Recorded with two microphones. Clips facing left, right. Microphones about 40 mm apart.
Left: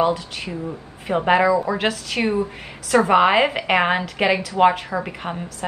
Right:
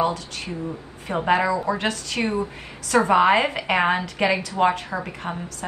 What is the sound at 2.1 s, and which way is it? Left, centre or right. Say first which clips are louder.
Speech: left 3 dB; left.